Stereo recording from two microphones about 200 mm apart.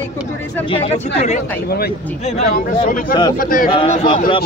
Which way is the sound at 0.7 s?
30° left (ahead or behind).